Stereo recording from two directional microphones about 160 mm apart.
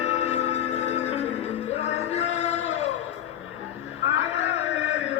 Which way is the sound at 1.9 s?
45° left (ahead or behind).